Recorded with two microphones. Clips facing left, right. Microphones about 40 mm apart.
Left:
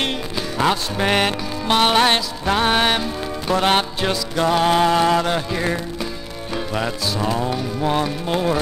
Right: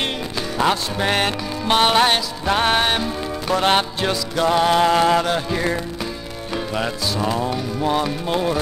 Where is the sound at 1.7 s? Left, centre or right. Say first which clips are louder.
Even; centre.